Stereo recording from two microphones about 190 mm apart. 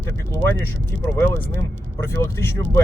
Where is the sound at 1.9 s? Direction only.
15° left (ahead or behind).